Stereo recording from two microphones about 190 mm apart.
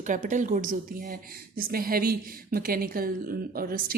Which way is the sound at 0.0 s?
40° right (ahead or behind).